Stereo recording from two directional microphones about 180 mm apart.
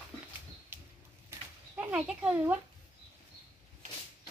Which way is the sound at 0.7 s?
10° right (ahead or behind).